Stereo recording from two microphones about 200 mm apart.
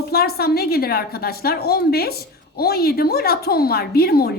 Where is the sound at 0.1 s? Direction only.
50° left (ahead or behind).